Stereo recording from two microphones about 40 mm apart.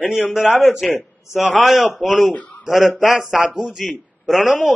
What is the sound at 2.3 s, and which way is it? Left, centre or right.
Speech, left.